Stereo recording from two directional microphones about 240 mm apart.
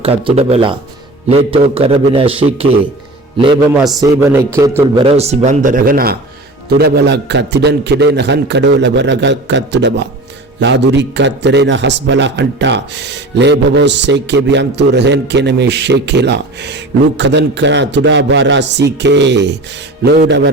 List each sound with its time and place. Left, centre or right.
0.0 s a man's voice: right
3.8 s a man's voice: centre
4.0 s a man's voice: centre
5.0 s a man's voice: right